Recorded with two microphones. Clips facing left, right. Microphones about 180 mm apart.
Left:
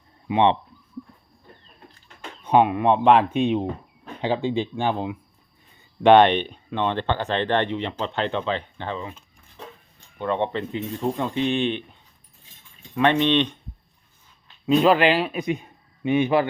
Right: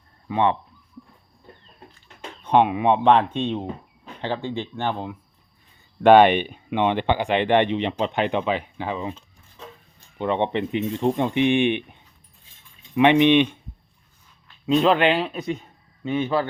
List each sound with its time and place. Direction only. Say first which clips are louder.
0.3 s speech: left 2 dB; 20° left (ahead or behind)
2.4 s speech: even; 5° left (ahead or behind)
6.0 s speech: right 1 dB; 5° right (ahead or behind)
10.2 s speech: right 2 dB; 20° right (ahead or behind)
13.0 s speech: right 4 dB; 15° right (ahead or behind)
14.7 s a man's voice: left 1 dB; 5° left (ahead or behind)